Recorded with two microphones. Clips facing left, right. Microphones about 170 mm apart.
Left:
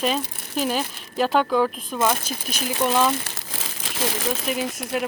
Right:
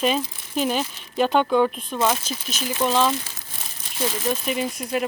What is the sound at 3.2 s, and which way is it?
Crumpling, 90° left.